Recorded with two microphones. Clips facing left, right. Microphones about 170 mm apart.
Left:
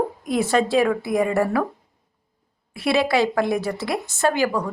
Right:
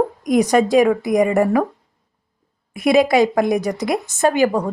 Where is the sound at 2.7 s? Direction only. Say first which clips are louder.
Right 6 dB; 15° right (ahead or behind).